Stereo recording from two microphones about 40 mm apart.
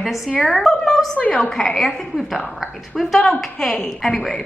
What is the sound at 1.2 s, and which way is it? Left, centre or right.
Speech, left.